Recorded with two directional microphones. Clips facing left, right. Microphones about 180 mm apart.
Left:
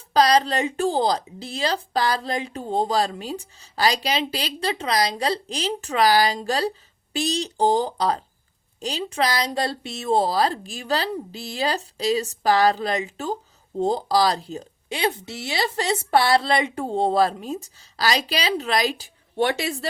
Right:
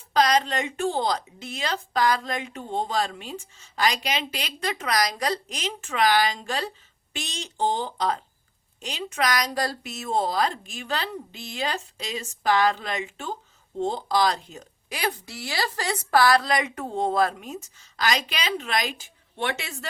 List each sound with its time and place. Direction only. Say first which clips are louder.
0.1 s a woman's voice: left 3 dB; 35° left (ahead or behind)